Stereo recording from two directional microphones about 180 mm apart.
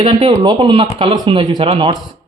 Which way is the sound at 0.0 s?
25° right (ahead or behind).